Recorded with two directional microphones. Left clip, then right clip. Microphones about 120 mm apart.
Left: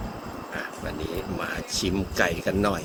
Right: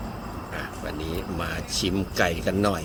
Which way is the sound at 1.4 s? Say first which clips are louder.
Right 1 dB; 10° right (ahead or behind).